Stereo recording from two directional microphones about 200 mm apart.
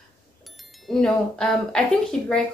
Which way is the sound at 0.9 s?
Centre (ahead or behind).